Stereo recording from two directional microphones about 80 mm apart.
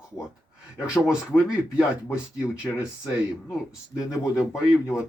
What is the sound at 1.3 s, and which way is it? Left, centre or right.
Speech, left.